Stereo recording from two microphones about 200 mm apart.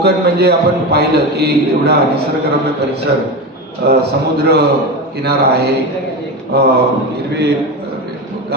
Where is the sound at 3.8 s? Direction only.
55° right (ahead or behind).